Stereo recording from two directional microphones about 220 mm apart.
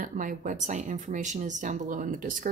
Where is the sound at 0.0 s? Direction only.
40° right (ahead or behind).